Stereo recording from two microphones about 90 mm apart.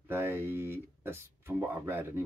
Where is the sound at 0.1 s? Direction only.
25° right (ahead or behind).